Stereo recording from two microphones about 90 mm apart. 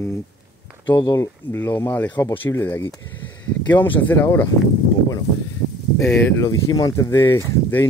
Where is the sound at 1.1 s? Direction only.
30° left (ahead or behind).